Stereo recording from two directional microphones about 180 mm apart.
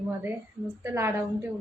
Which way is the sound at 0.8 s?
15° right (ahead or behind).